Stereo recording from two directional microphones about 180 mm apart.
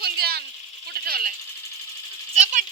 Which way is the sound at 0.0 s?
60° right (ahead or behind).